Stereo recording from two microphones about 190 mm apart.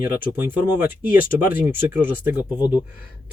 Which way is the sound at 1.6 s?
10° right (ahead or behind).